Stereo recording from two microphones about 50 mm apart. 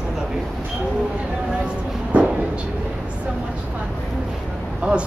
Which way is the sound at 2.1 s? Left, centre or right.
Right.